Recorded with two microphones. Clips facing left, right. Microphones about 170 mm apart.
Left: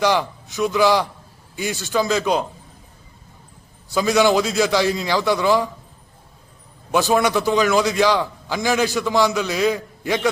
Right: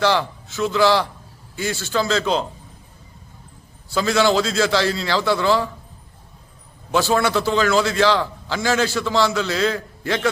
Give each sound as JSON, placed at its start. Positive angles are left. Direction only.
{"t": 0.0, "sound": "a man's voice", "side_deg": 15}
{"t": 3.8, "sound": "a man's voice", "side_deg": 15}
{"t": 6.9, "sound": "a man's voice", "side_deg": 15}